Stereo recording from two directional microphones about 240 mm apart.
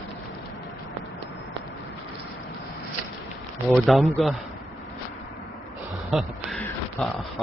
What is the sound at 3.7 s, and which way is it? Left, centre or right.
Speech, centre.